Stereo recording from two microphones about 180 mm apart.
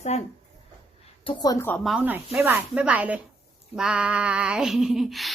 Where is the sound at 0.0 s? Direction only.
35° left (ahead or behind).